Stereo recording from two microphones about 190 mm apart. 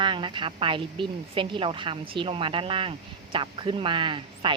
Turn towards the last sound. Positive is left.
turn(degrees=-25)  # may be behind; listen again after turning